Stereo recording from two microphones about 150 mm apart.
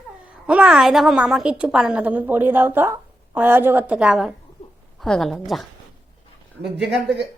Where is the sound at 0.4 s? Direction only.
5° right (ahead or behind).